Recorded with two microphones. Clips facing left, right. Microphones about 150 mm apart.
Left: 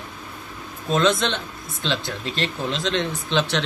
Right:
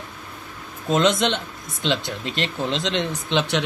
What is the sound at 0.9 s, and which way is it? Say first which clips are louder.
Speech: right 1 dB; 20° right (ahead or behind).